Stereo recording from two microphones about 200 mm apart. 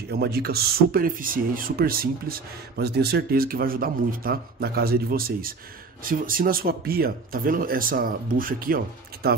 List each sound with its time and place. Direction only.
0.1 s speech: 55° right (ahead or behind)